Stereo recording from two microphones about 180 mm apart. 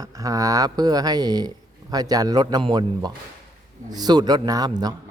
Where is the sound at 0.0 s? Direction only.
20° right (ahead or behind).